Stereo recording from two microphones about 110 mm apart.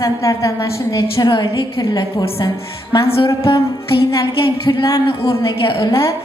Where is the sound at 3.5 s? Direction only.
50° left (ahead or behind).